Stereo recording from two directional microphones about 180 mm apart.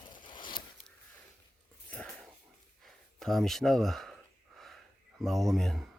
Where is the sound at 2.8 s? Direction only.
Centre (ahead or behind).